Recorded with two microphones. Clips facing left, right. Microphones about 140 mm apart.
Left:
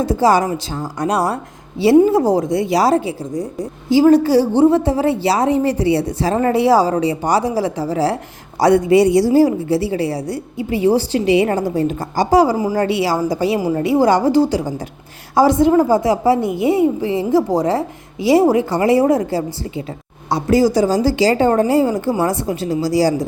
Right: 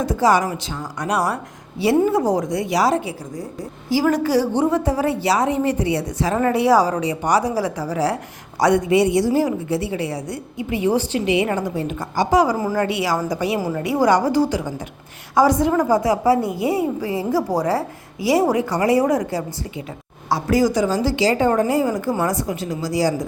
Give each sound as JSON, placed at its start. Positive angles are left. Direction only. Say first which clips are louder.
{"t": 0.0, "sound": "a woman's voice", "louder": "left 3 dB", "side_deg": 30}